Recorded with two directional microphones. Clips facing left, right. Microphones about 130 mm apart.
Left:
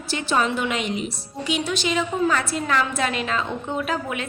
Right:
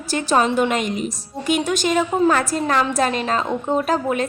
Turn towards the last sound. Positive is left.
turn(degrees=-40)  # may be behind; listen again after turning